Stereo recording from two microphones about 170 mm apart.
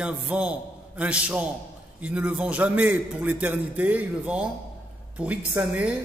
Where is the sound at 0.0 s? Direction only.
5° right (ahead or behind).